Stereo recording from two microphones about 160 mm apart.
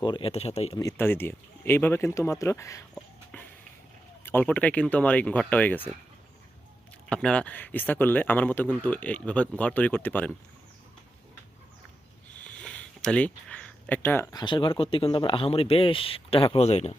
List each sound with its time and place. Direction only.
0.0 s speech: 30° left (ahead or behind)
0.8 s speech: 15° left (ahead or behind)
3.3 s a sound: 10° left (ahead or behind)
4.2 s speech: 10° left (ahead or behind)
7.1 s speech: 5° left (ahead or behind)
12.6 s a sound: 5° left (ahead or behind); by 14.7 s 30° left (ahead or behind)
14.8 s speech: 35° left (ahead or behind)